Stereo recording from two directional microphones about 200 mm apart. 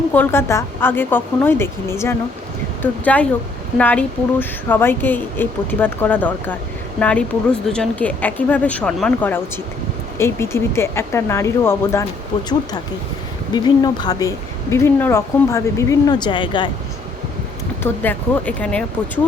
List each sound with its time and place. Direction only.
0.1 s speech: 10° left (ahead or behind)
13.5 s speech: 20° left (ahead or behind)
17.8 s speech: 10° left (ahead or behind)